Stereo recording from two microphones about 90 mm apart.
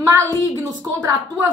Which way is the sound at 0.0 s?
35° right (ahead or behind).